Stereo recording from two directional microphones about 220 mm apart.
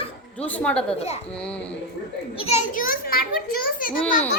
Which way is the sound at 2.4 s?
30° left (ahead or behind).